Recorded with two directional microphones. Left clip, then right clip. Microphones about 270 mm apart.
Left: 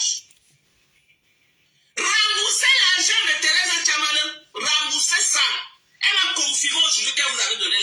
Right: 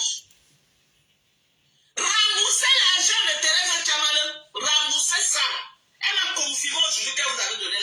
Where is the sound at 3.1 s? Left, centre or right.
Left.